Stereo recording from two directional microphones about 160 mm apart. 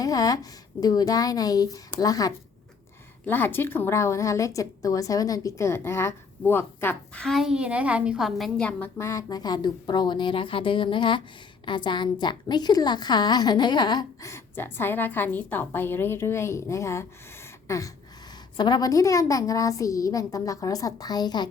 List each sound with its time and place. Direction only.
0.0 s a woman's voice: 20° left (ahead or behind)
3.2 s a woman's voice: 10° left (ahead or behind)